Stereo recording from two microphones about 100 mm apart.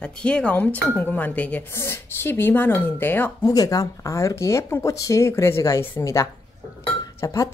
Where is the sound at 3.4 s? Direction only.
40° left (ahead or behind).